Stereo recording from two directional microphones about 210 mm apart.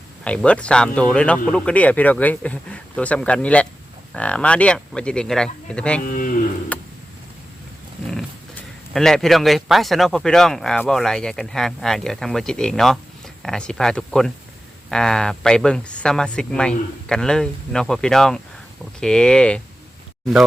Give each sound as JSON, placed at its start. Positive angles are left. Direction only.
{"t": 0.3, "sound": "speech", "side_deg": 5}
{"t": 6.0, "sound": "cattle", "side_deg": 40}
{"t": 6.7, "sound": "a sound", "side_deg": 5}
{"t": 8.0, "sound": "speech", "side_deg": 0}